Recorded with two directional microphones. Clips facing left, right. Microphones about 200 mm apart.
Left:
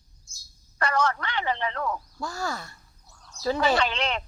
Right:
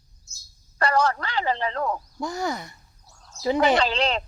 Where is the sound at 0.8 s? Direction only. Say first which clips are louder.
Right 3 dB; 35° right (ahead or behind).